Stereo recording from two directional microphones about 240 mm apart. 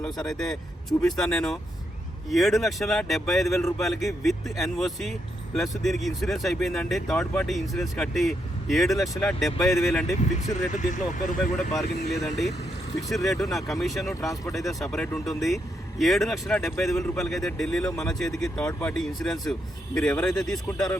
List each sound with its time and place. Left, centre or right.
0.3 s speech: centre
2.3 s speech: centre
10.8 s speech: left
11.3 s speech: centre
14.0 s speech: centre
14.7 s speech: centre